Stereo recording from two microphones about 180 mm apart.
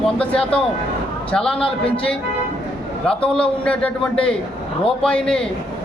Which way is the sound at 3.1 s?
5° left (ahead or behind).